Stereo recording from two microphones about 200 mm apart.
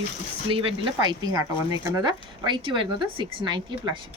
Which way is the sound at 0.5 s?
25° right (ahead or behind).